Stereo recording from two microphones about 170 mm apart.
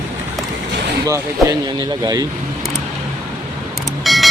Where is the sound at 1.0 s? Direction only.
20° right (ahead or behind).